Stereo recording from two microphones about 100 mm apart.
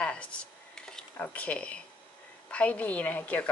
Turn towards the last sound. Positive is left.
turn(degrees=15)  # may be behind; listen again after turning